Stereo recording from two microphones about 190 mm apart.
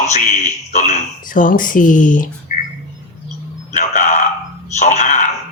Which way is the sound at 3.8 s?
40° left (ahead or behind).